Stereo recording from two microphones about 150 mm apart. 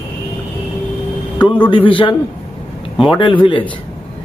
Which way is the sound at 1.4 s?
35° left (ahead or behind).